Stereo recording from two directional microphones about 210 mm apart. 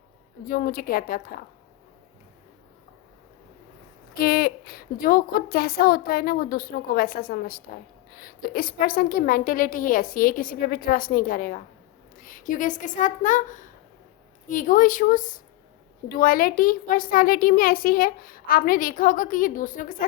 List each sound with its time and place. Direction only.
0.4 s a woman's voice: 45° left (ahead or behind)
4.2 s a woman's voice: 45° left (ahead or behind)